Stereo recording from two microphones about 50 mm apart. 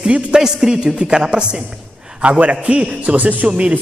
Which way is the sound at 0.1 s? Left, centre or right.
Centre.